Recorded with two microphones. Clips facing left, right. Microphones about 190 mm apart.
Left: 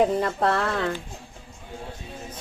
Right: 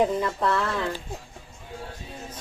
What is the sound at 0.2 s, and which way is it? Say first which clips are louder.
Speech: left 2 dB; 55° left (ahead or behind).